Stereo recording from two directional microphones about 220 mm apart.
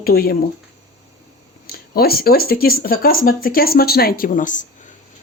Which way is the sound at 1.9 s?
45° left (ahead or behind).